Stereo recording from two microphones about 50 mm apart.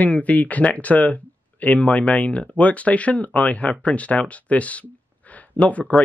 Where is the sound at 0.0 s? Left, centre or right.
Left.